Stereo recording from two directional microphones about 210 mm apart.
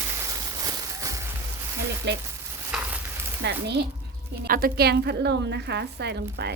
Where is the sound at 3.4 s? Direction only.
55° right (ahead or behind).